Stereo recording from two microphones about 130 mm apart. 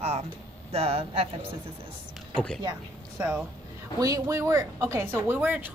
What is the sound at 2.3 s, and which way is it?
Speech, 5° left (ahead or behind).